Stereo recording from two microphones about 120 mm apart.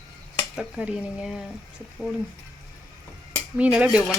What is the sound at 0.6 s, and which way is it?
Speech, 5° right (ahead or behind).